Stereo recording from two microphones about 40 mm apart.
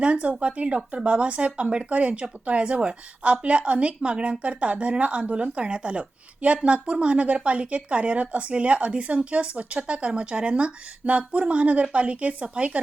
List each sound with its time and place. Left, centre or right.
0.0 s a woman's voice: right